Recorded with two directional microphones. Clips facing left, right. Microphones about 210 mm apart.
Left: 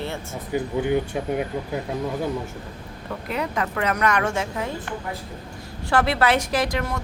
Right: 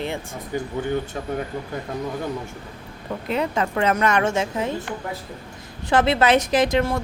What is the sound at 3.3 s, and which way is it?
A woman's voice, 25° right (ahead or behind).